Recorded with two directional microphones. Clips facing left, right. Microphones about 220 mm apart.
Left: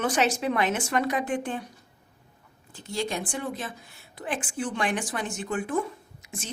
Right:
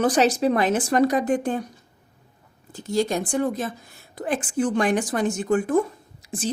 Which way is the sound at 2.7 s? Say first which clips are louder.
Right 7 dB; 40° right (ahead or behind).